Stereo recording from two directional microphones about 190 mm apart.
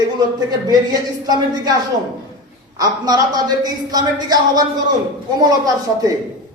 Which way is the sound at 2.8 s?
20° right (ahead or behind).